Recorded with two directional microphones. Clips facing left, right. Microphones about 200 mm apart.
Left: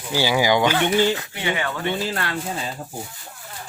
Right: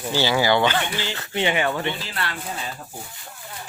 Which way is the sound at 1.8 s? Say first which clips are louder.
Left 4 dB; 45° left (ahead or behind).